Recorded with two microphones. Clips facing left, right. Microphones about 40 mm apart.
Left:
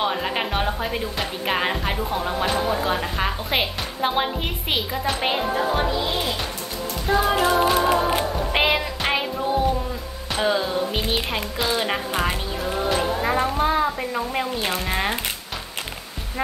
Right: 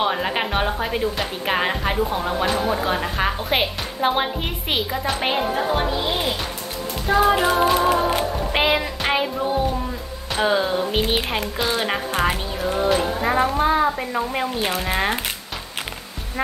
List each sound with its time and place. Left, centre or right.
0.0 s speech: centre
7.1 s speech: centre
7.6 s music: centre
10.3 s music: centre
10.6 s speech: centre
11.2 s speech: centre